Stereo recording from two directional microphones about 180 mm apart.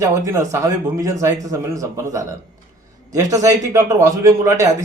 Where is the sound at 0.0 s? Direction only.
15° right (ahead or behind).